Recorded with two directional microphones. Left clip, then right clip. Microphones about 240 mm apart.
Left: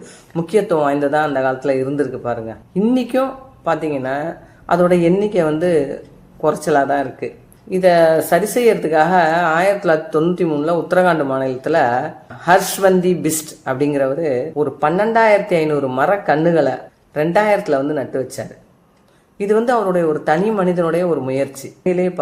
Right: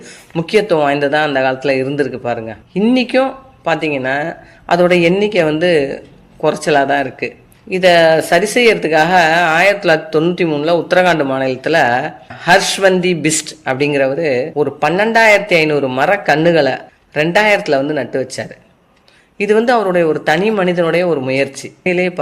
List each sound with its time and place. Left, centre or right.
0.3 s speech: right